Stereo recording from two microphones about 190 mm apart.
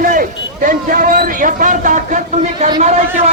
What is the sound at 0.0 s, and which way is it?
A man's voice, 45° right (ahead or behind).